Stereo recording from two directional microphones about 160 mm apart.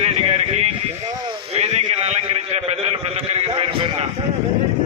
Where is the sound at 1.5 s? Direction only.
45° right (ahead or behind).